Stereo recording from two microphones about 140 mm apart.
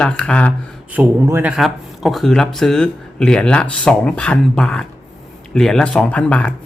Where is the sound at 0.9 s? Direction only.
10° right (ahead or behind).